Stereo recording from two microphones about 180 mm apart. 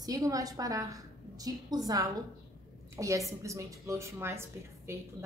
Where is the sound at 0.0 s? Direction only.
20° right (ahead or behind).